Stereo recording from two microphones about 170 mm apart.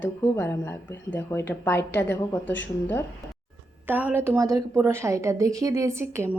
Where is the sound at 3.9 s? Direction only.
10° right (ahead or behind).